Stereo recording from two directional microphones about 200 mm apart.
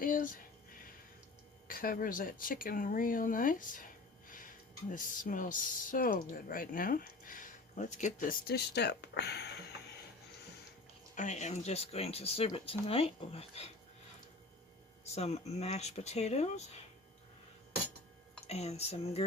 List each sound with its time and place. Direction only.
0.0 s a sound: 45° left (ahead or behind)
1.6 s speech: 45° left (ahead or behind)
11.1 s speech: 35° left (ahead or behind)
15.0 s speech: 30° left (ahead or behind)
18.4 s speech: 30° left (ahead or behind)